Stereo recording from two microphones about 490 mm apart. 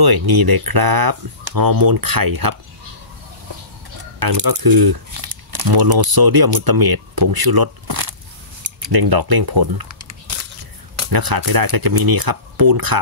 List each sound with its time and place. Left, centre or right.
0.0 s speech: right
4.2 s speech: right
9.9 s a sound: right
11.0 s speech: right